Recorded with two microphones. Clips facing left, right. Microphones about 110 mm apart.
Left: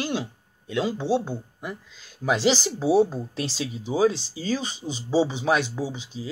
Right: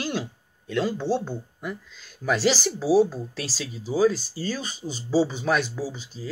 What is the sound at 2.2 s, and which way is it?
Speech, 20° left (ahead or behind).